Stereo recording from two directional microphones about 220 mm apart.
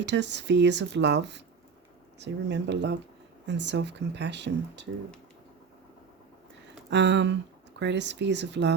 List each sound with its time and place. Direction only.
0.0 s speech: 50° right (ahead or behind)
6.9 s speech: 50° right (ahead or behind)